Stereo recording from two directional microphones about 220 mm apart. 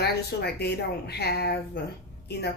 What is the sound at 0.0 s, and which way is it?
A woman's voice, 50° left (ahead or behind).